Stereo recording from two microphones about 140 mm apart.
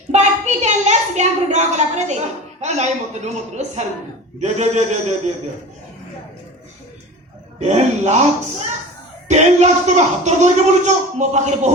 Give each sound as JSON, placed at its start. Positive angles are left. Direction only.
{"t": 0.1, "sound": "a sound", "side_deg": -55}
{"t": 4.4, "sound": "speech", "side_deg": -55}
{"t": 7.6, "sound": "speech", "side_deg": -55}
{"t": 9.3, "sound": "speech", "side_deg": -55}